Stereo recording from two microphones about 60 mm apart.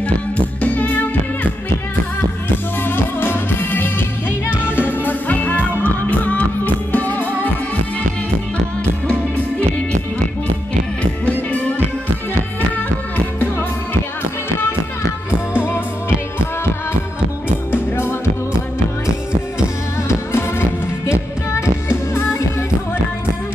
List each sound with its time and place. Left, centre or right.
0.6 s music: left
2.8 s music: left
17.6 s music: left
20.1 s music: left